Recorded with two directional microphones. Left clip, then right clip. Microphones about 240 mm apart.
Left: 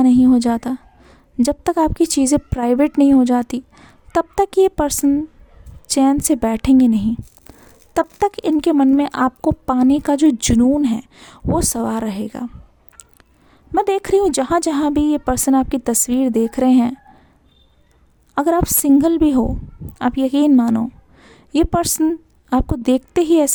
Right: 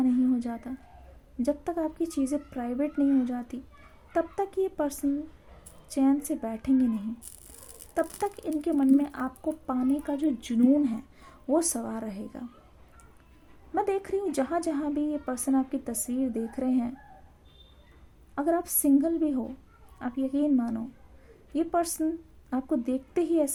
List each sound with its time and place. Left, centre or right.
0.0 s a woman's voice: left
8.2 s a woman's voice: left
13.7 s a woman's voice: left
18.3 s a woman's voice: left